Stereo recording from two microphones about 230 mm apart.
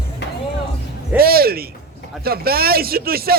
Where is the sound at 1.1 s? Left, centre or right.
Right.